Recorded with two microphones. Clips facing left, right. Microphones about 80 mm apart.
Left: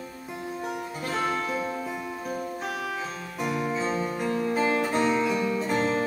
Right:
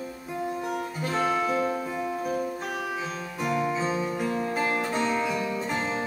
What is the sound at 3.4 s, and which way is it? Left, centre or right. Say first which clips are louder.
Music: right 1 dB; centre.